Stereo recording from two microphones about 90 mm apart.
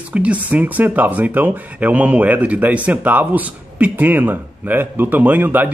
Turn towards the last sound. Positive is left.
turn(degrees=-20)  # may be behind; listen again after turning